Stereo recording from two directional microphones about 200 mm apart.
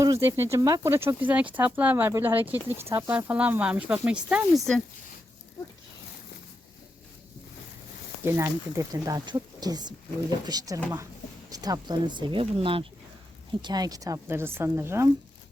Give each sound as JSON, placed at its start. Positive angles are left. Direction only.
{"t": 0.0, "sound": "speech", "side_deg": -15}
{"t": 8.2, "sound": "speech", "side_deg": -15}